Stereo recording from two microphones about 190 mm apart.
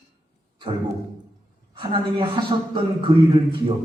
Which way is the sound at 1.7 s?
25° right (ahead or behind).